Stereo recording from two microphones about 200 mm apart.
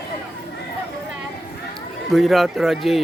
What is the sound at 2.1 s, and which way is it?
Speech, centre (ahead or behind).